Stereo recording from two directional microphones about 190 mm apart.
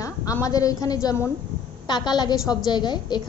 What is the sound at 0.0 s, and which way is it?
A woman's voice, 15° left (ahead or behind).